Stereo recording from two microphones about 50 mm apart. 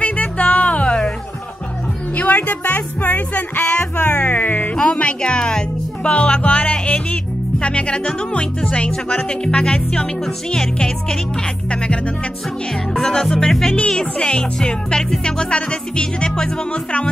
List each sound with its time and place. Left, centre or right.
0.0 s music: left
2.1 s speech: left
3.9 s music: left
4.7 s speech: left
8.1 s music: centre
8.9 s music: centre
10.2 s music: centre
13.0 s music: centre
13.8 s music: centre